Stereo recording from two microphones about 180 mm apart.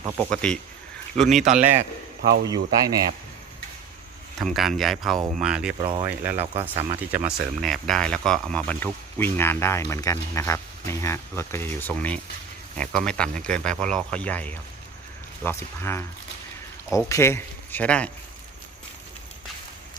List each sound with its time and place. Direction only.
0.0 s speech: 15° right (ahead or behind)
0.3 s speech: 5° left (ahead or behind)
1.5 s speech: 40° right (ahead or behind)
2.8 s speech: 20° right (ahead or behind)
4.4 s speech: centre (ahead or behind)
5.8 s speech: 25° right (ahead or behind)
6.1 s speech: 10° right (ahead or behind)
6.5 s speech: 35° right (ahead or behind)
7.3 s speech: centre (ahead or behind)